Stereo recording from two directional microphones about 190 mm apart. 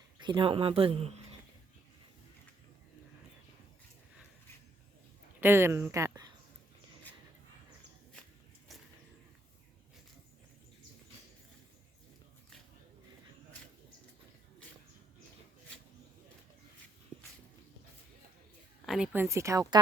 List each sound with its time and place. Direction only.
0.2 s speech: 25° right (ahead or behind)
5.4 s speech: 10° right (ahead or behind)
18.9 s speech: 5° right (ahead or behind)